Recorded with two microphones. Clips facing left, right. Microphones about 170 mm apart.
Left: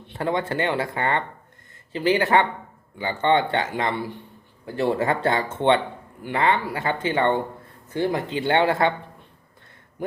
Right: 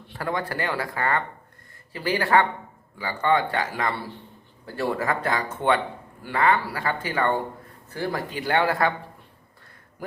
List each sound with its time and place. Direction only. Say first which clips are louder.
0.1 s a man's voice: left 4 dB; 25° left (ahead or behind)
10.0 s speech: left 5 dB; 25° left (ahead or behind)